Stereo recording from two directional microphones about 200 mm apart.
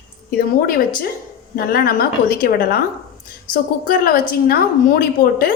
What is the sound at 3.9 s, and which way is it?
A woman's voice, 45° left (ahead or behind).